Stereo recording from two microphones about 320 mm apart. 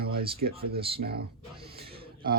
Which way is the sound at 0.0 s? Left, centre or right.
Right.